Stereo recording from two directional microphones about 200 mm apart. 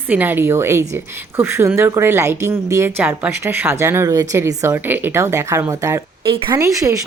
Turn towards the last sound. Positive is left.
turn(degrees=-15)  # may be behind; listen again after turning